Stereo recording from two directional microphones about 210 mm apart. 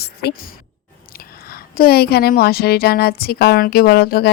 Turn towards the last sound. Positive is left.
turn(degrees=45)  # may be behind; listen again after turning